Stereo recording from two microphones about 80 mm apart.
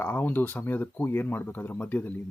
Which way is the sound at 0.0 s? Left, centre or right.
Left.